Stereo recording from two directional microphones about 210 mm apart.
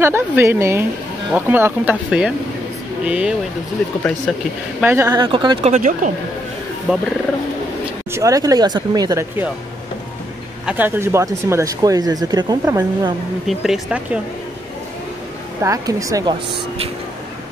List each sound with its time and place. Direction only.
0.0 s speech: 10° right (ahead or behind)
4.7 s speech: 10° right (ahead or behind)
5.7 s speech: 40° right (ahead or behind)
6.9 s speech: 5° right (ahead or behind)
8.1 s speech: 15° right (ahead or behind)
10.6 s speech: 5° right (ahead or behind)
13.5 s speech: centre (ahead or behind)
15.6 s speech: 15° right (ahead or behind)